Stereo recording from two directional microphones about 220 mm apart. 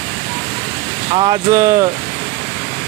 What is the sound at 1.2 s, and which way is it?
Speech, 20° right (ahead or behind).